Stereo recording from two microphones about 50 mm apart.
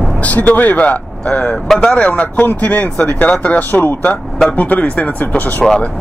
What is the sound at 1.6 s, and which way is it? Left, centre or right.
Speech, centre.